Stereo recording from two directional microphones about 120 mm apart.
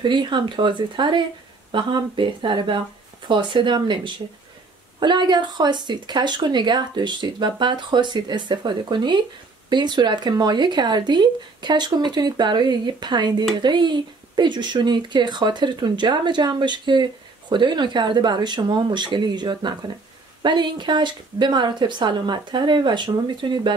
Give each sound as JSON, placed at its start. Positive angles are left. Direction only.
{"t": 0.0, "sound": "speech", "side_deg": -40}